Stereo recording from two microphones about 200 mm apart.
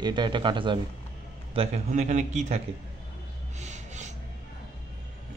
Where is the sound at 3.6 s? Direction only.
35° right (ahead or behind).